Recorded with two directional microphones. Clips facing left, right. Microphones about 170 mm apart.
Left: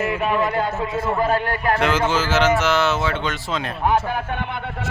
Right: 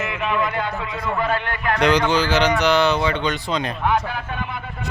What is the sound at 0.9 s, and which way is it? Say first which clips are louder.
Speech: left 3 dB; 25° left (ahead or behind).